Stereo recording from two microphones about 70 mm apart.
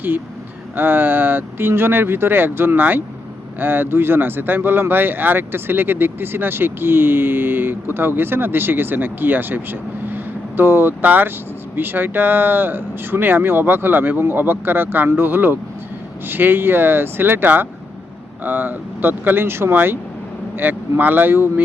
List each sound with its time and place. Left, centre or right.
0.8 s speech: right
10.6 s speech: right